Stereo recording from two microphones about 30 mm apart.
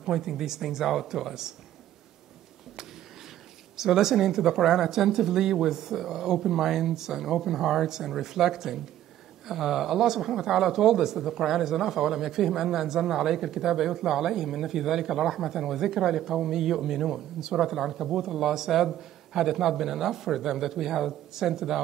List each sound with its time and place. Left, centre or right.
0.0 s speech: centre
3.7 s speech: centre